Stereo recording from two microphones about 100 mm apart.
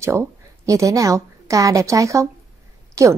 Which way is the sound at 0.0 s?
30° right (ahead or behind).